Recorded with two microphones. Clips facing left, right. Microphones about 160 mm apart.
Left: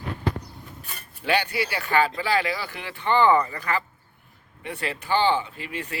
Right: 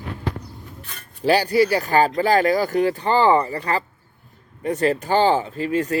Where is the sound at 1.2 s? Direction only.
35° right (ahead or behind).